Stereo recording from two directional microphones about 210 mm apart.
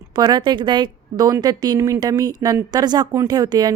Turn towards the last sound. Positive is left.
turn(degrees=-20)  # may be behind; listen again after turning